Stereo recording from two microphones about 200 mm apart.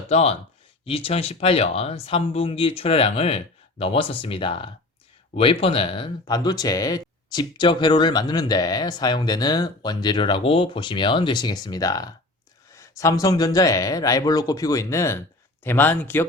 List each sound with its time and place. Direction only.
0.1 s speech: 30° left (ahead or behind); by 16.2 s 10° left (ahead or behind)